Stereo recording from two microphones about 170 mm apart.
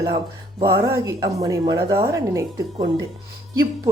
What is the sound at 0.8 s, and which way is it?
Speech, 15° right (ahead or behind).